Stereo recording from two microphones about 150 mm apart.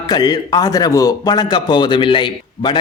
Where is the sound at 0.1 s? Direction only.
30° left (ahead or behind).